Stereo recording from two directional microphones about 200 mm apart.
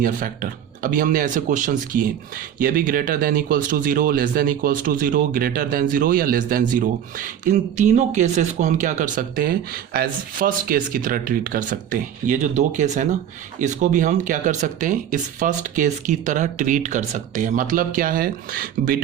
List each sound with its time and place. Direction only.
0.8 s speech: 45° right (ahead or behind)